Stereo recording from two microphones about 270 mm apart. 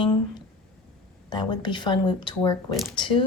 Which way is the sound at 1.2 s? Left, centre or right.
Centre.